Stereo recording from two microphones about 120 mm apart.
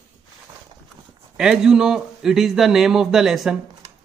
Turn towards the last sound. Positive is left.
turn(degrees=-5)  # may be behind; listen again after turning